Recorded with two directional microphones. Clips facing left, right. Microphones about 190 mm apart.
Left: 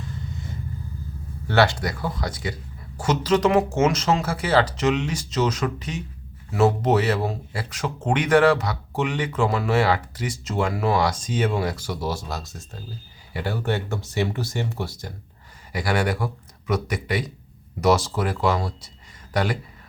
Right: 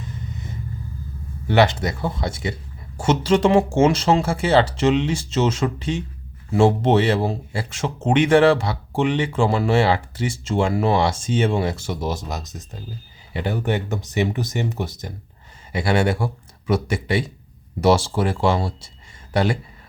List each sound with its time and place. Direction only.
0.0 s vehicle: 20° right (ahead or behind)
1.5 s speech: 20° right (ahead or behind)